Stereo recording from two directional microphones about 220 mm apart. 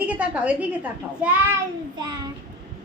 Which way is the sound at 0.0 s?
5° right (ahead or behind).